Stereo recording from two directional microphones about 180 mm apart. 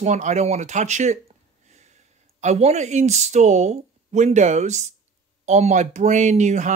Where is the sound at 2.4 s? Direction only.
40° right (ahead or behind).